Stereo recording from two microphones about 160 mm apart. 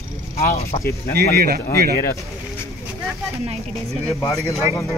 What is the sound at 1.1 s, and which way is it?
Speech, 70° right (ahead or behind).